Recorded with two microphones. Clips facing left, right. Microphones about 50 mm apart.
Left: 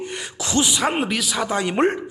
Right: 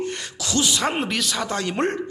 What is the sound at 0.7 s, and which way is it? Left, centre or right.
A man's voice, centre.